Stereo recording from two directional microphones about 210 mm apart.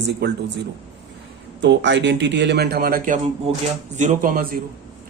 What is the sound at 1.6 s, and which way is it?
A man's voice, 55° right (ahead or behind).